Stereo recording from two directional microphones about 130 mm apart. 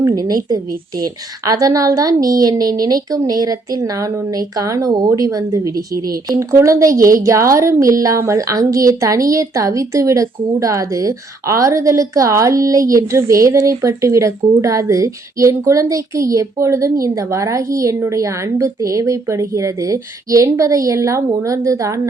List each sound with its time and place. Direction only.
0.1 s a woman's voice: 30° right (ahead or behind)